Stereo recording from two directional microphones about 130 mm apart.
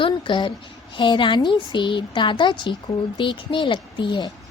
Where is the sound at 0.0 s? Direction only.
35° left (ahead or behind).